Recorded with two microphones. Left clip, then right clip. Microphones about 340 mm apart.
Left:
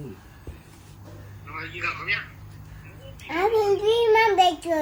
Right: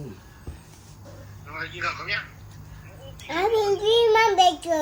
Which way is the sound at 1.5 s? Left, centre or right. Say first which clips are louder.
Right 1 dB; centre.